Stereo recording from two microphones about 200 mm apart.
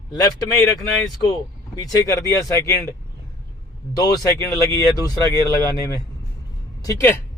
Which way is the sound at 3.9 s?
15° left (ahead or behind).